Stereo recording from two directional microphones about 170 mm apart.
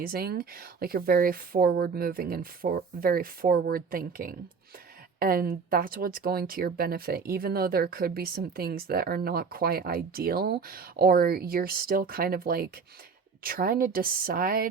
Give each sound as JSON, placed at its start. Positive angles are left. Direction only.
{"t": 0.0, "sound": "speech", "side_deg": -65}